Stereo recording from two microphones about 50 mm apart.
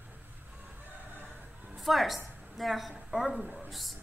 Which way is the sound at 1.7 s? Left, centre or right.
Centre.